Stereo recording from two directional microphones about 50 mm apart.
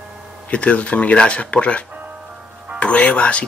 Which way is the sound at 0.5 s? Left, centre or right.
Left.